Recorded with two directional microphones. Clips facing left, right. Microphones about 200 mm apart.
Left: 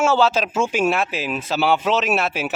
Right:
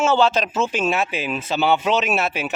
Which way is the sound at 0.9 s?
Centre (ahead or behind).